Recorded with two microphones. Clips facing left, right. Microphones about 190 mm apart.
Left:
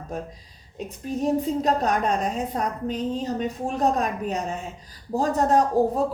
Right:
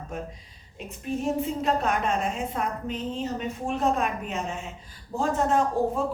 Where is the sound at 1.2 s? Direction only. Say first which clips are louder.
Left 5 dB; 35° left (ahead or behind).